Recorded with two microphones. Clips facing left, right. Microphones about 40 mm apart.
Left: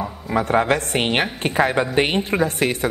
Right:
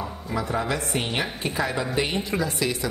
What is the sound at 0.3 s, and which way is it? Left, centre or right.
A man's voice, left.